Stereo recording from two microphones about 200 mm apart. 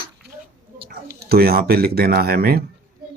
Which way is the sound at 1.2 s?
50° right (ahead or behind).